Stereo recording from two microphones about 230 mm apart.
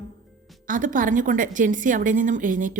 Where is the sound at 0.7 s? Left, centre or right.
Right.